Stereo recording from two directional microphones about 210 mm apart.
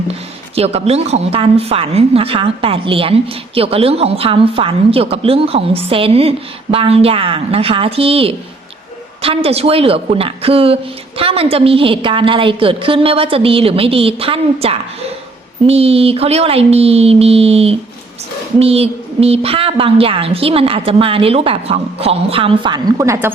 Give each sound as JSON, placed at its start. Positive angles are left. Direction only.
{"t": 0.1, "sound": "speech", "side_deg": -30}